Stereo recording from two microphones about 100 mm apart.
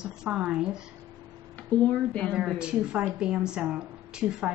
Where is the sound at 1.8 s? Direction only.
15° left (ahead or behind).